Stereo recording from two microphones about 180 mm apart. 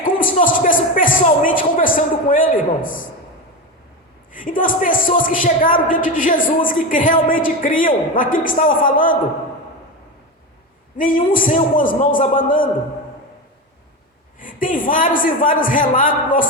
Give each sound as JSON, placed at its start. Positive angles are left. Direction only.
{"t": 0.0, "sound": "speech", "side_deg": 50}
{"t": 4.3, "sound": "speech", "side_deg": 50}
{"t": 10.9, "sound": "speech", "side_deg": 50}
{"t": 14.3, "sound": "speech", "side_deg": 50}